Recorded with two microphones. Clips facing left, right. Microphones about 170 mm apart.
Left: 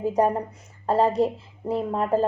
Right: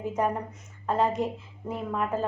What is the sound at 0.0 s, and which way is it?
A woman's voice, 35° left (ahead or behind).